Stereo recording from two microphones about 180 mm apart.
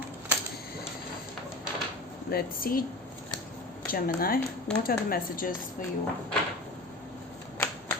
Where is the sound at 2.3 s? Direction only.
55° left (ahead or behind).